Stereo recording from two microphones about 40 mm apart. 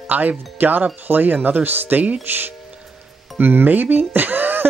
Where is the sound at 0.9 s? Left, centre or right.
Right.